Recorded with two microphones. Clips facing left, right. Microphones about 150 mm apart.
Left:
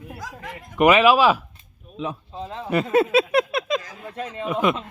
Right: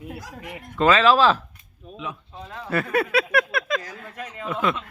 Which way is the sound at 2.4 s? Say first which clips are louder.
Left 3 dB; 25° left (ahead or behind).